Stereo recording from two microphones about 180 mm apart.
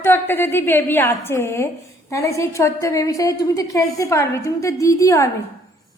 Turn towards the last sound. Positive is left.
turn(degrees=15)  # may be behind; listen again after turning